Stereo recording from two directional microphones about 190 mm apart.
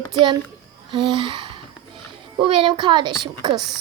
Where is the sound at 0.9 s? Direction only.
25° right (ahead or behind).